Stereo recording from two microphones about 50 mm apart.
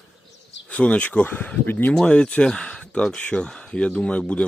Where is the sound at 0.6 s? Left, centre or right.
Left.